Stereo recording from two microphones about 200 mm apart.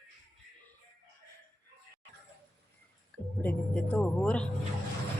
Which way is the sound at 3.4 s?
5° left (ahead or behind).